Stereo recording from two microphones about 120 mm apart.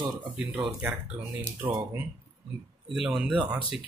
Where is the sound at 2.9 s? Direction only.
5° right (ahead or behind).